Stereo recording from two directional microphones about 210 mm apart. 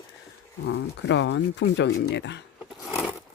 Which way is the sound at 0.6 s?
60° left (ahead or behind).